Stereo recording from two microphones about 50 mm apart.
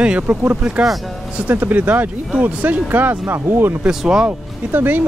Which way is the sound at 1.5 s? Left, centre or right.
Right.